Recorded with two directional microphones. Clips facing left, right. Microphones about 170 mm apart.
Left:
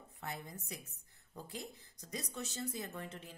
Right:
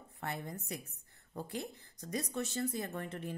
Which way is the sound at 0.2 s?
65° right (ahead or behind).